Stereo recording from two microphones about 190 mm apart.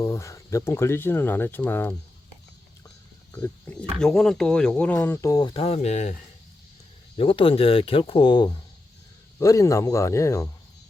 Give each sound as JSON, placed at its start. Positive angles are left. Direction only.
{"t": 0.0, "sound": "speech", "side_deg": 15}
{"t": 3.3, "sound": "speech", "side_deg": 15}
{"t": 4.0, "sound": "speech", "side_deg": 0}
{"t": 7.2, "sound": "speech", "side_deg": 25}